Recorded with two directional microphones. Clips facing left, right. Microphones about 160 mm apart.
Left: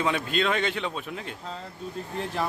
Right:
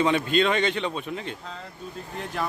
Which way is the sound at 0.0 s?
Centre (ahead or behind).